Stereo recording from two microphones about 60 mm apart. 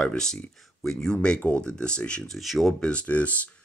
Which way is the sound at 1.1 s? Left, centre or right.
Centre.